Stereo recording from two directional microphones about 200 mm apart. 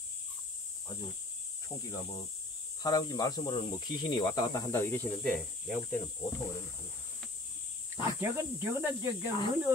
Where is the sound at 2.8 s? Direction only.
20° left (ahead or behind).